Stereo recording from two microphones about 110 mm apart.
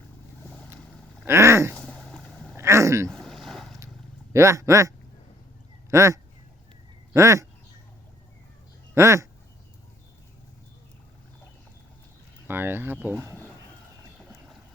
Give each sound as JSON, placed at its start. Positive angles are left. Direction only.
{"t": 0.4, "sound": "vehicle", "side_deg": 10}
{"t": 1.2, "sound": "a sound", "side_deg": -25}
{"t": 1.7, "sound": "boat", "side_deg": 10}
{"t": 2.6, "sound": "a sound", "side_deg": -25}
{"t": 3.1, "sound": "vehicle", "side_deg": 5}
{"t": 4.3, "sound": "speech", "side_deg": -30}
{"t": 9.0, "sound": "speech", "side_deg": -25}
{"t": 12.5, "sound": "speech", "side_deg": -20}
{"t": 13.3, "sound": "a sound", "side_deg": 15}